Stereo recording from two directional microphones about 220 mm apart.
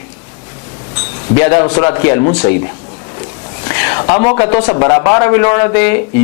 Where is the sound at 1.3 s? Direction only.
20° left (ahead or behind).